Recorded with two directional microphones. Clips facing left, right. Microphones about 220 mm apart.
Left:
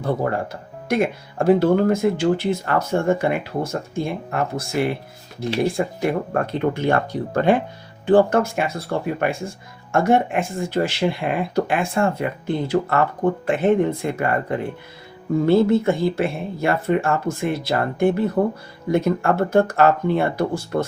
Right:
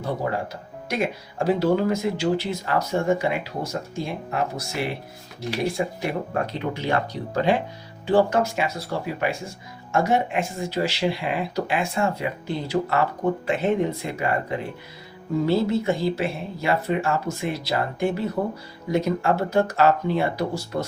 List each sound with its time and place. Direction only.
0.0 s speech: 55° left (ahead or behind)
15.4 s speech: 55° left (ahead or behind)